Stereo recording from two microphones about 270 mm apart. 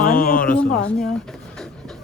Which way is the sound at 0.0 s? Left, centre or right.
Left.